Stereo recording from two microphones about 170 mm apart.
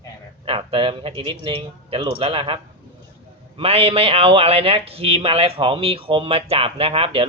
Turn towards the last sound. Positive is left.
turn(degrees=-35)  # may be behind; listen again after turning